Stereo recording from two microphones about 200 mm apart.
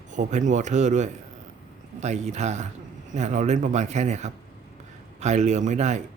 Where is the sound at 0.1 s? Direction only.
35° right (ahead or behind).